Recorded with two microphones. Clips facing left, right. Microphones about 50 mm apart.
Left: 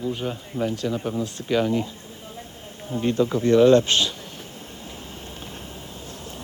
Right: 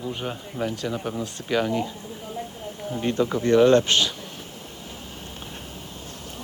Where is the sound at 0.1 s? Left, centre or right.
Centre.